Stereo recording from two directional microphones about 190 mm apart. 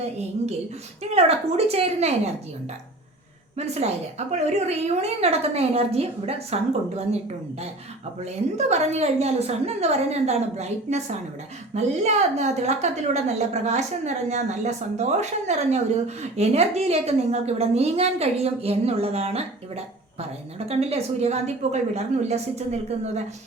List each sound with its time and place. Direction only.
1.1 s a woman's voice: 30° right (ahead or behind)
3.6 s a woman's voice: 35° right (ahead or behind)
8.2 s a woman's voice: 35° right (ahead or behind)